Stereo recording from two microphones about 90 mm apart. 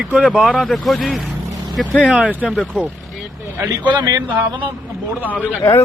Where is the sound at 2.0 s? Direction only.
15° right (ahead or behind).